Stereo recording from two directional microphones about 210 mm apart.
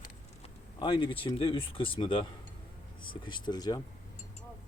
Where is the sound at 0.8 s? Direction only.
25° left (ahead or behind).